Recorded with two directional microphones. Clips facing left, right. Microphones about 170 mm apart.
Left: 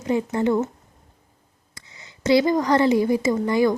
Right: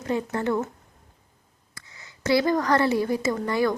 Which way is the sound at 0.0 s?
15° left (ahead or behind).